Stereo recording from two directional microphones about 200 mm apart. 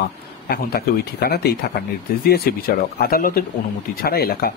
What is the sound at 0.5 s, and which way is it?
Speech, 50° left (ahead or behind).